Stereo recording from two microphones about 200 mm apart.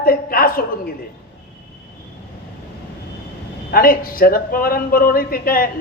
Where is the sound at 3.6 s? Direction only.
45° left (ahead or behind).